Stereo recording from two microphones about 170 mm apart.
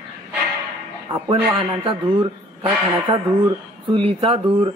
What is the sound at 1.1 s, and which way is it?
A man's voice, 30° right (ahead or behind).